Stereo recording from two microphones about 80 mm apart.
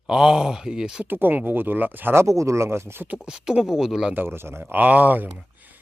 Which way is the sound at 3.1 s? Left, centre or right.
Centre.